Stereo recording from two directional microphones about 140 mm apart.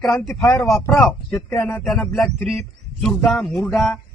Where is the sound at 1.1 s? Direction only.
5° left (ahead or behind).